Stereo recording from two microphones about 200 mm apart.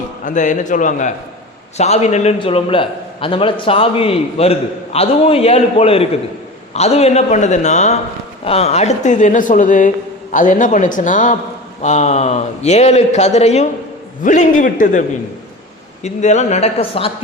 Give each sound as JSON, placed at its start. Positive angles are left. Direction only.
{"t": 0.3, "sound": "a man's voice", "side_deg": 40}
{"t": 16.0, "sound": "a man's voice", "side_deg": 35}